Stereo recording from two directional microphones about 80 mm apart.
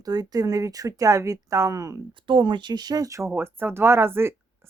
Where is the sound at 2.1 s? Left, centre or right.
Right.